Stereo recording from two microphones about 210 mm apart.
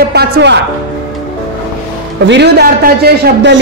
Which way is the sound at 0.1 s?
50° right (ahead or behind).